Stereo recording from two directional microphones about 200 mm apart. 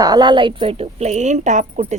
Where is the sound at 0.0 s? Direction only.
20° right (ahead or behind).